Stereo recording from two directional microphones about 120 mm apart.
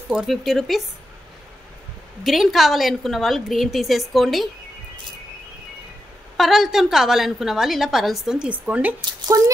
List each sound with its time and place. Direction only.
0.1 s a woman's voice: 5° right (ahead or behind)
2.2 s a woman's voice: centre (ahead or behind)
6.3 s a woman's voice: centre (ahead or behind)
9.3 s speech: 30° right (ahead or behind)